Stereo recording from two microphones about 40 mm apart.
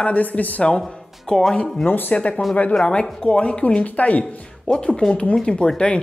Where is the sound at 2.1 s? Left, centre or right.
Left.